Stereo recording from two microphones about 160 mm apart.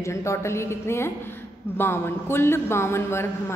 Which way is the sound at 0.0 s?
20° left (ahead or behind).